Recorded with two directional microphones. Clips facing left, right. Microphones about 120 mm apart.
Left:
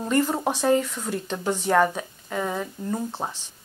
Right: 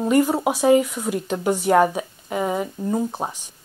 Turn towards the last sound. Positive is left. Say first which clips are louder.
# right 5 dB
turn(degrees=-15)  # may be behind; listen again after turning